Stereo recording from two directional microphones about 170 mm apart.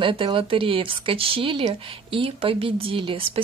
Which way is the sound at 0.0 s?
30° right (ahead or behind).